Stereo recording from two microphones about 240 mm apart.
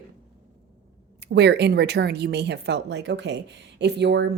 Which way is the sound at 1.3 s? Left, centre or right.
Right.